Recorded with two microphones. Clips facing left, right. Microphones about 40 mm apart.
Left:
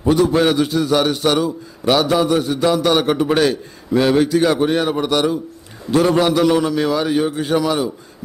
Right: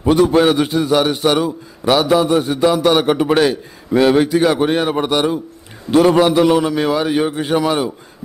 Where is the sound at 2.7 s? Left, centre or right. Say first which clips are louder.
Right 2 dB; centre; by 6.2 s right.